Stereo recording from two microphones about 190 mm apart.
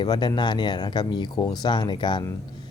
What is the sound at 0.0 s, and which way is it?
Speech, 25° left (ahead or behind).